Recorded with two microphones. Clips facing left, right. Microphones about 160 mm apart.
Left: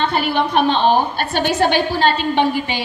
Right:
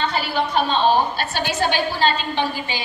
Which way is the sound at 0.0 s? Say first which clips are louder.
Left 4 dB; 55° left (ahead or behind).